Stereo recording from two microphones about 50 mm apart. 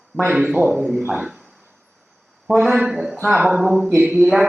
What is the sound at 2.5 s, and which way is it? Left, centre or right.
Speech, centre.